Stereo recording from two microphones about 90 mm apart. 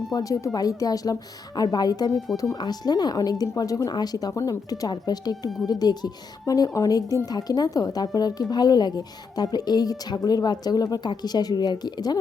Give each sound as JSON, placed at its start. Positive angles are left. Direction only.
{"t": 0.1, "sound": "a woman's voice", "side_deg": 40}
{"t": 6.4, "sound": "a woman's voice", "side_deg": 40}